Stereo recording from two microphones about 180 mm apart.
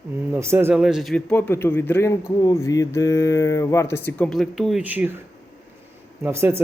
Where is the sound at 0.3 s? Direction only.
15° right (ahead or behind).